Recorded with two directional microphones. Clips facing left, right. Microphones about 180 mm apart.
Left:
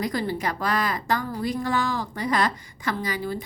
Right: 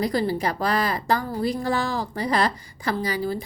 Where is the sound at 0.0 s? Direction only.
35° right (ahead or behind).